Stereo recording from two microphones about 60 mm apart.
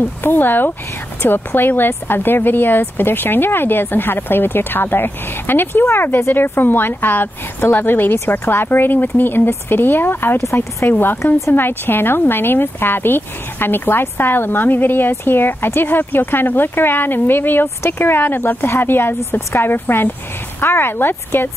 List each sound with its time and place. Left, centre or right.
0.2 s speech: left
10.5 s speech: left
10.9 s speech: left